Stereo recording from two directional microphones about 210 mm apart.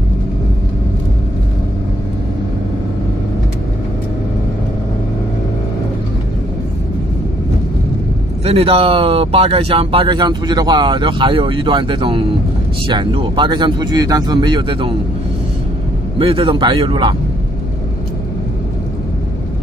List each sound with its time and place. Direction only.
8.5 s speech: 25° right (ahead or behind)
16.2 s speech: 25° right (ahead or behind)